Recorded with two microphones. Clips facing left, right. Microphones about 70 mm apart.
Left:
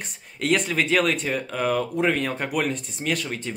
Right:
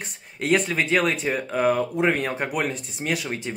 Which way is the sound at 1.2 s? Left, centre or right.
Centre.